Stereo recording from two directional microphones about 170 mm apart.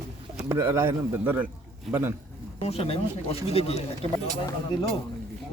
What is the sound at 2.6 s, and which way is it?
Speech, 35° left (ahead or behind).